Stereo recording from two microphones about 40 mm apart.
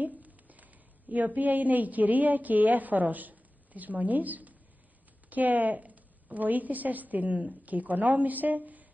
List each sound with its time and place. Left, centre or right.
0.0 s a woman's voice: right